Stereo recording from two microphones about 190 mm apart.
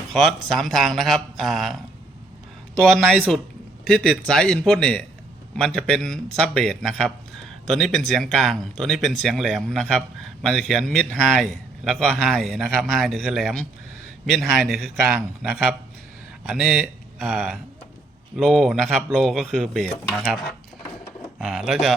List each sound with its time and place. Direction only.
0.1 s speech: centre (ahead or behind)
3.1 s speech: 5° left (ahead or behind)
16.5 s speech: centre (ahead or behind)